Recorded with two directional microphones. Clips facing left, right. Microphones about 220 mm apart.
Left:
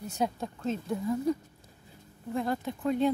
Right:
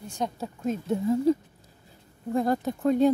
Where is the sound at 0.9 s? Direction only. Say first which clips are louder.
Right 7 dB; 25° right (ahead or behind).